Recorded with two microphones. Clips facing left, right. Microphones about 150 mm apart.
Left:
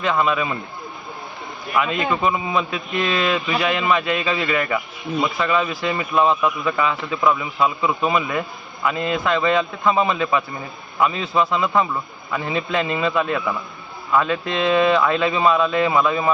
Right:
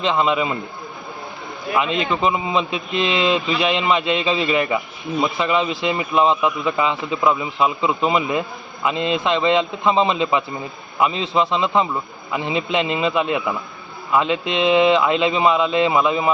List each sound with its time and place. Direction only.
0.0 s a man's voice: 25° right (ahead or behind)
1.7 s a man's voice: 20° right (ahead or behind)